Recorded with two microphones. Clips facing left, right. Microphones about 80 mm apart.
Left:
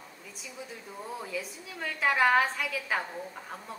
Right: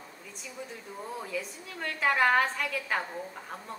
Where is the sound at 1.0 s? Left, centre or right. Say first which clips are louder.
Right 1 dB; centre.